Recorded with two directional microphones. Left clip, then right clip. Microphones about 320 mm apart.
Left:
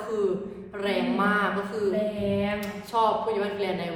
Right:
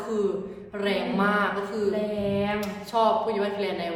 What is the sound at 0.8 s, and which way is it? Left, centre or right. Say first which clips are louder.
Speech: even; centre.